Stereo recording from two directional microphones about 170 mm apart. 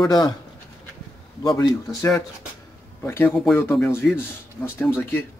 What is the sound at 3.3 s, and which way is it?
Speech, centre (ahead or behind).